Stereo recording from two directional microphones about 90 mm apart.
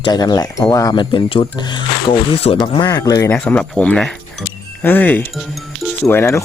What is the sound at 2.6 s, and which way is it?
Speech, 45° left (ahead or behind).